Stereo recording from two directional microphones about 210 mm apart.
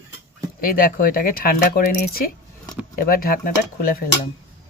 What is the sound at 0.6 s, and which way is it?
Speech, 45° left (ahead or behind).